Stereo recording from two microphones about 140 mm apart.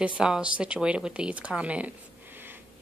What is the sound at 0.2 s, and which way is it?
Speech, 5° right (ahead or behind).